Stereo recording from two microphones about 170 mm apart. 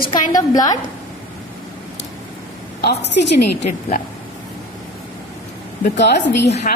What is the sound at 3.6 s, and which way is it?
Speech, 45° left (ahead or behind).